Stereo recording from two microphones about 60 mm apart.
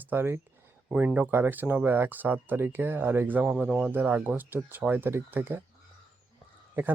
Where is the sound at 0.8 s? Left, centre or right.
Right.